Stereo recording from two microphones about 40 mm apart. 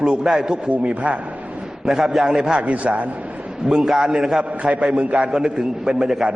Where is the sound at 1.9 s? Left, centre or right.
Centre.